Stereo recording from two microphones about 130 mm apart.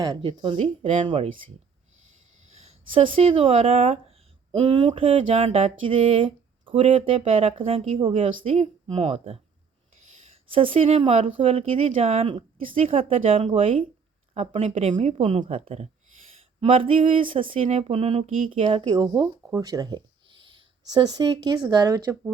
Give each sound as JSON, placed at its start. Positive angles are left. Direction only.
{"t": 0.2, "sound": "speech", "side_deg": -45}
{"t": 2.5, "sound": "a sound", "side_deg": -60}
{"t": 2.9, "sound": "speech", "side_deg": -45}
{"t": 4.6, "sound": "speech", "side_deg": -35}
{"t": 5.8, "sound": "speech", "side_deg": -45}
{"t": 10.5, "sound": "speech", "side_deg": -45}
{"t": 14.3, "sound": "speech", "side_deg": -55}
{"t": 15.2, "sound": "speech", "side_deg": -45}
{"t": 17.6, "sound": "speech", "side_deg": -50}